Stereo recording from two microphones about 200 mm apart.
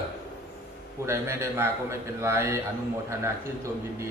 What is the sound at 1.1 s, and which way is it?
A man's voice, 15° right (ahead or behind).